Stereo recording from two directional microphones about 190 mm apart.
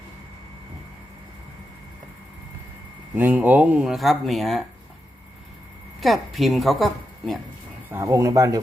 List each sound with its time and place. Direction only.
3.2 s speech: 10° right (ahead or behind)
6.0 s a woman's voice: centre (ahead or behind)
7.9 s speech: 15° right (ahead or behind)